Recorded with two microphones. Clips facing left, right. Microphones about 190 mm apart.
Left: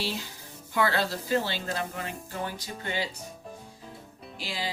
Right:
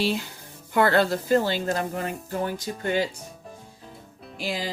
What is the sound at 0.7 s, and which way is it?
Speech, 55° right (ahead or behind).